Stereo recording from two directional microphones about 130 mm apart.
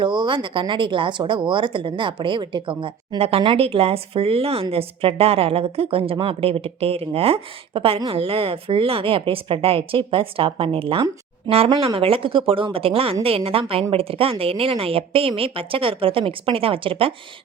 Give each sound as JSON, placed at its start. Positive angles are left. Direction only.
{"t": 0.0, "sound": "a woman's voice", "side_deg": -40}